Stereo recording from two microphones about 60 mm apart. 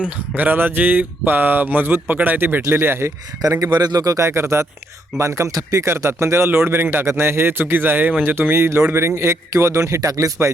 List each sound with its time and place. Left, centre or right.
0.3 s speech: right
3.5 s a man's voice: right
4.2 s a man's voice: right
5.8 s a man's voice: right